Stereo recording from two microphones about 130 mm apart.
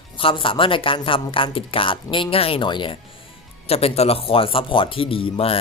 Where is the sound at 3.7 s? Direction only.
50° left (ahead or behind).